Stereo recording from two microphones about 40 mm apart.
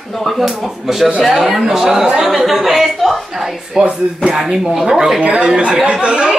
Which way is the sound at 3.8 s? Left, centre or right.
Right.